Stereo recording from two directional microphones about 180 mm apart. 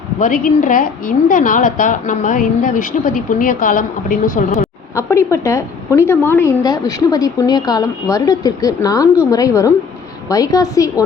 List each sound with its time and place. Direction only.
0.2 s a woman's voice: 45° left (ahead or behind)
4.9 s a woman's voice: 15° left (ahead or behind)